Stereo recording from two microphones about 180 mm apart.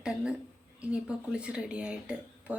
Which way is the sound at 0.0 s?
5° right (ahead or behind).